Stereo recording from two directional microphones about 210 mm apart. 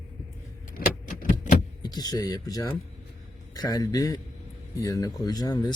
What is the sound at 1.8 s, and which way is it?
A man's voice, 20° left (ahead or behind).